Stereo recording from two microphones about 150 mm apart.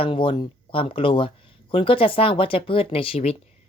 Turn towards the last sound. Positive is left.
turn(degrees=40)  # may be behind; listen again after turning